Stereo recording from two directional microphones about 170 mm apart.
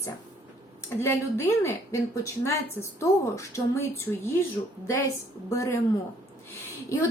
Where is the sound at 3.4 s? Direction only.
15° left (ahead or behind).